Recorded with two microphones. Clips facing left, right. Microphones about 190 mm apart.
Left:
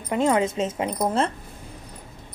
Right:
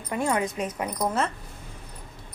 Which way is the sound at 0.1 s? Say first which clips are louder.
Left 5 dB; 20° left (ahead or behind).